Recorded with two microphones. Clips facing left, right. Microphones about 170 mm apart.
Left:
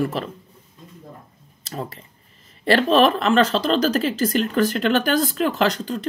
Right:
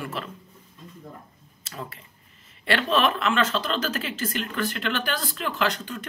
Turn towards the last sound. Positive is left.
turn(degrees=35)  # may be behind; listen again after turning